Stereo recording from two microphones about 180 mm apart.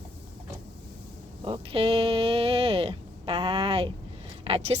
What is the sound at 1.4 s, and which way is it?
Speech, 30° right (ahead or behind).